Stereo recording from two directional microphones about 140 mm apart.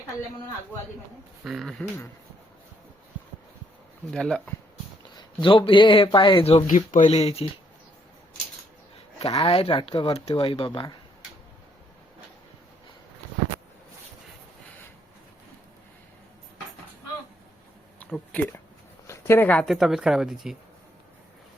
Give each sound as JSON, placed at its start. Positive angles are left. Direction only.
{"t": 1.5, "sound": "speech", "side_deg": 0}
{"t": 4.1, "sound": "speech", "side_deg": 5}
{"t": 5.1, "sound": "speech", "side_deg": 35}
{"t": 6.7, "sound": "speech", "side_deg": 65}
{"t": 9.1, "sound": "speech", "side_deg": 45}
{"t": 10.7, "sound": "speech", "side_deg": 30}
{"t": 18.3, "sound": "speech", "side_deg": 10}
{"t": 19.0, "sound": "a sound", "side_deg": 15}
{"t": 19.6, "sound": "speech", "side_deg": 0}